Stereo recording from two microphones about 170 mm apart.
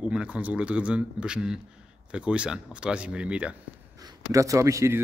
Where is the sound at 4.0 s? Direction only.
20° right (ahead or behind).